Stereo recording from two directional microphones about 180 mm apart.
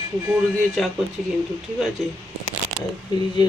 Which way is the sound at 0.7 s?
Centre (ahead or behind).